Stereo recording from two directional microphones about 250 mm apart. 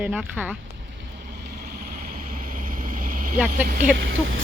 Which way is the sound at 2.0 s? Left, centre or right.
Right.